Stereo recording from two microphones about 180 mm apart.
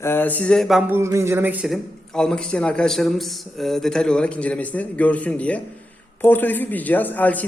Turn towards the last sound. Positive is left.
turn(degrees=10)  # may be behind; listen again after turning